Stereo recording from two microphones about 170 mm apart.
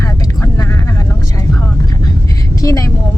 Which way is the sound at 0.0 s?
20° left (ahead or behind).